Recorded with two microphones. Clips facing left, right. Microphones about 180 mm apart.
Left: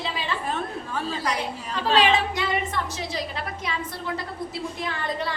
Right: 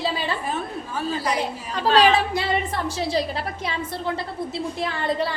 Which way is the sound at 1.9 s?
40° right (ahead or behind).